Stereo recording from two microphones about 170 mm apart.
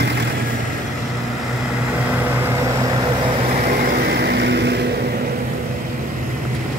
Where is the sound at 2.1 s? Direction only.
10° right (ahead or behind); by 3.6 s 30° right (ahead or behind).